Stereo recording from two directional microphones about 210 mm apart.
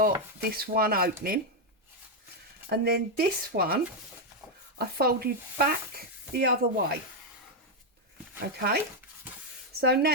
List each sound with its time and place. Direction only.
0.0 s speech: 45° right (ahead or behind)
2.6 s speech: 45° right (ahead or behind)
4.8 s speech: 45° right (ahead or behind)
8.4 s speech: 50° right (ahead or behind)
9.8 s speech: 50° right (ahead or behind)